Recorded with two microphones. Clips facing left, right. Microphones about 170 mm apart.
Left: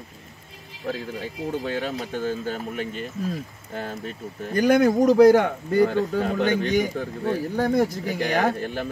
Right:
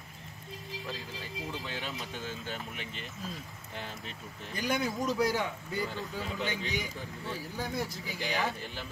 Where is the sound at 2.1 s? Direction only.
45° left (ahead or behind).